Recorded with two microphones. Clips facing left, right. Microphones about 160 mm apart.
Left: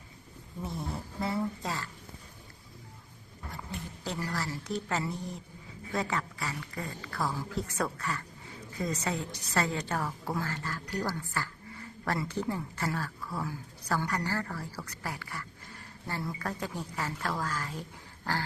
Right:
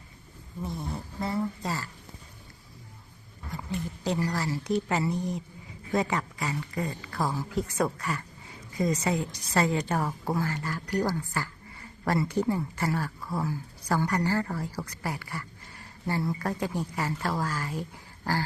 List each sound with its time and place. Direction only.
0.6 s a woman's voice: centre (ahead or behind)
4.0 s speech: 15° right (ahead or behind)